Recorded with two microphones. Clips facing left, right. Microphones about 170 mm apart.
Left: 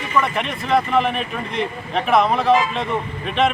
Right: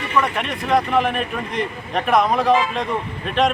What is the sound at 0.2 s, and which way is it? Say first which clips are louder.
Speech: even; centre (ahead or behind).